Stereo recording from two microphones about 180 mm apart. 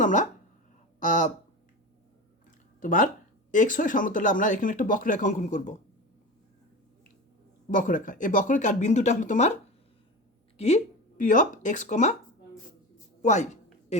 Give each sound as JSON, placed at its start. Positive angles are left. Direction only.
{"t": 0.0, "sound": "a sound", "side_deg": 45}
{"t": 0.9, "sound": "speech", "side_deg": 45}
{"t": 2.8, "sound": "speech", "side_deg": 50}
{"t": 7.7, "sound": "speech", "side_deg": 45}
{"t": 10.6, "sound": "speech", "side_deg": 35}
{"t": 13.2, "sound": "speech", "side_deg": 40}